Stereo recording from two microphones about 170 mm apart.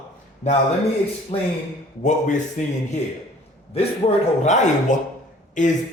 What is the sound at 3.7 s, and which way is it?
Speech, 35° left (ahead or behind).